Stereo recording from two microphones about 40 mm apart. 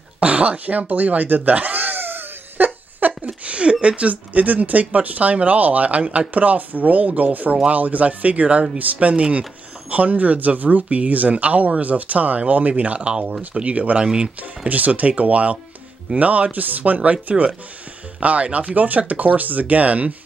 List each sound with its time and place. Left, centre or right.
0.2 s a sound: right
3.3 s a sound: right
3.8 s speech: right
9.1 s speech: right
13.1 s speech: right
13.6 s speech: right
14.0 s speech: right
14.7 s speech: right